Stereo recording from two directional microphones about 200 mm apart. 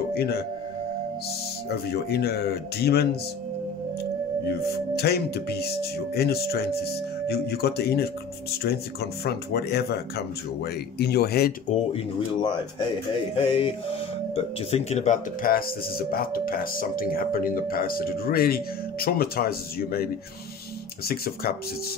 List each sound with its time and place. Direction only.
0.1 s speech: 55° left (ahead or behind)
1.7 s speech: 55° left (ahead or behind)
4.5 s speech: 55° left (ahead or behind)
11.7 s speech: 25° left (ahead or behind); by 21.5 s 50° left (ahead or behind)